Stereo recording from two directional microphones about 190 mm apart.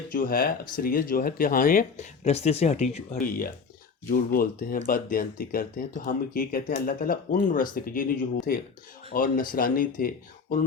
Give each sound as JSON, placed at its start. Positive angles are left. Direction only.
{"t": 0.1, "sound": "speech", "side_deg": 50}